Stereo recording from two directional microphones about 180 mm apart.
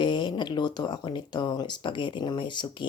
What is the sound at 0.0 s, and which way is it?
Speech, 25° left (ahead or behind).